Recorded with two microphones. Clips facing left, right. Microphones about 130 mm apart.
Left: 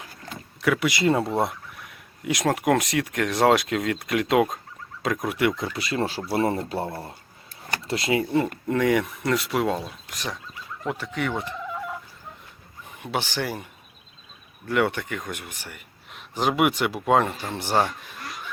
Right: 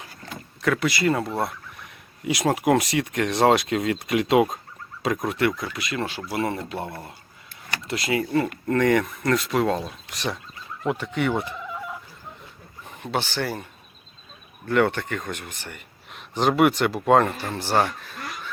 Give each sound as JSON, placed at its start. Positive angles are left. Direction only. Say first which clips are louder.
{"t": 0.6, "sound": "speech", "louder": "even", "side_deg": 10}
{"t": 1.9, "sound": "speech", "louder": "right 1 dB", "side_deg": -5}
{"t": 5.3, "sound": "a man's voice", "louder": "left 1 dB", "side_deg": 15}
{"t": 5.5, "sound": "speech", "louder": "left 2 dB", "side_deg": 30}
{"t": 8.4, "sound": "a man's voice", "louder": "right 2 dB", "side_deg": 5}
{"t": 13.0, "sound": "a man's voice", "louder": "right 1 dB", "side_deg": 10}
{"t": 14.7, "sound": "a man's voice", "louder": "right 2 dB", "side_deg": 10}
{"t": 17.3, "sound": "a man's voice", "louder": "right 1 dB", "side_deg": 15}